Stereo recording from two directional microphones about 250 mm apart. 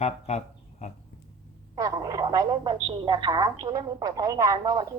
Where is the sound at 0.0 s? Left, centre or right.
Left.